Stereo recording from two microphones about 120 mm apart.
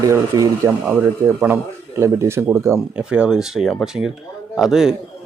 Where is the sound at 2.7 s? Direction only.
5° right (ahead or behind).